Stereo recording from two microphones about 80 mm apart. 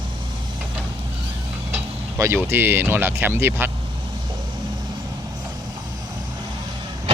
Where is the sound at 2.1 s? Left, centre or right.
Right.